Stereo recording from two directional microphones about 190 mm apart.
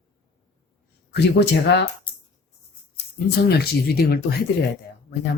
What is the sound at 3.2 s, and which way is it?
Speech, 55° left (ahead or behind).